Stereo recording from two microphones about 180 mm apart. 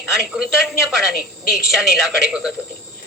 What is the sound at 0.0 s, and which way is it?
A man's voice, 5° right (ahead or behind).